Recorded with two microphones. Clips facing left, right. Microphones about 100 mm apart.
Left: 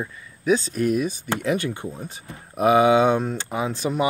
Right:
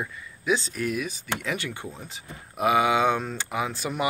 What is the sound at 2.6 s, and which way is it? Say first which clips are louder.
Speech: left 5 dB; 35° left (ahead or behind).